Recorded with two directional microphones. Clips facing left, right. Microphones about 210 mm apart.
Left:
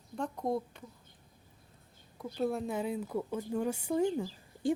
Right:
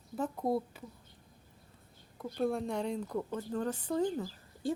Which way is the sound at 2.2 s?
Centre (ahead or behind).